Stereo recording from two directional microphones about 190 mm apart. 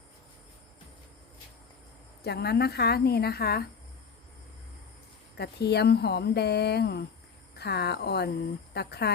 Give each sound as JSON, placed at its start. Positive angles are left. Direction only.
{"t": 2.2, "sound": "speech", "side_deg": 60}
{"t": 5.4, "sound": "speech", "side_deg": 60}